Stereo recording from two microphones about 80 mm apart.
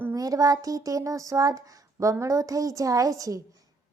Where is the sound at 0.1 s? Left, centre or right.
Right.